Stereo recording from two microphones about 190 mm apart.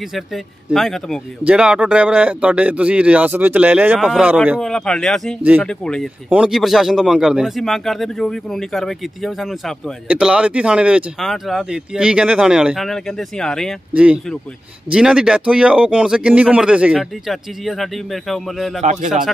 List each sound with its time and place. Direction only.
0.7 s speech: centre (ahead or behind)
18.8 s speech: 40° right (ahead or behind)
19.0 s speech: 5° right (ahead or behind)